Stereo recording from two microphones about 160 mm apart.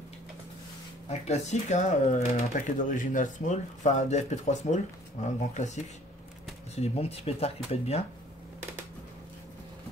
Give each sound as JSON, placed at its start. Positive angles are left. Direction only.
{"t": 1.0, "sound": "speech", "side_deg": 45}
{"t": 6.8, "sound": "speech", "side_deg": 40}